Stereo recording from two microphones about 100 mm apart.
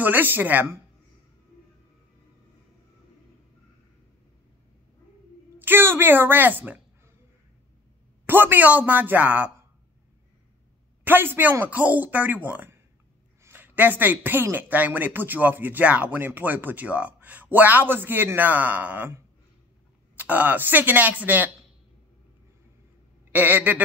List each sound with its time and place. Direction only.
0.0 s a man's voice: 20° right (ahead or behind)
5.6 s speech: 20° right (ahead or behind)
8.3 s a man's voice: 20° right (ahead or behind)
11.1 s a man's voice: 20° right (ahead or behind)
23.3 s a man's voice: 15° right (ahead or behind)